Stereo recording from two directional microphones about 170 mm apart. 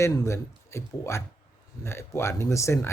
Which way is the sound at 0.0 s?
15° left (ahead or behind).